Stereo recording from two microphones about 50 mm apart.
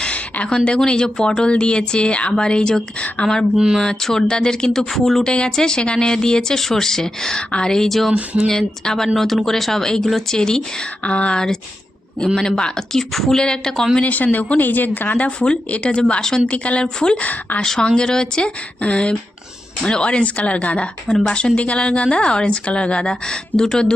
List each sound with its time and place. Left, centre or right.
0.0 s a sound: left
0.5 s speech: centre
3.2 s speech: centre
3.8 s speech: centre
8.1 s speech: right
8.4 s speech: centre
11.0 s speech: left
12.9 s speech: centre
14.0 s speech: left
15.4 s speech: left